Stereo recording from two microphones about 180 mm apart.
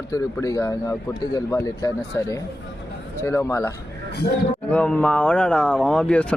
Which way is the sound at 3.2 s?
15° left (ahead or behind).